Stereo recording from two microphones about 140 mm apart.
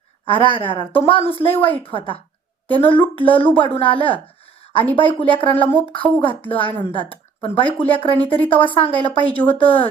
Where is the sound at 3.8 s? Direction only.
40° left (ahead or behind).